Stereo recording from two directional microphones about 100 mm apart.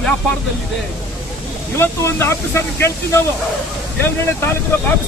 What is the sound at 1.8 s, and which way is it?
A man's voice, 25° left (ahead or behind).